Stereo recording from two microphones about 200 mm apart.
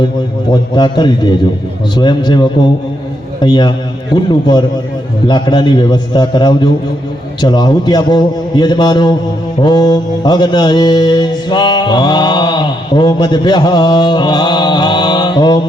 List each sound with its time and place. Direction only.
0.5 s mantra: 20° left (ahead or behind)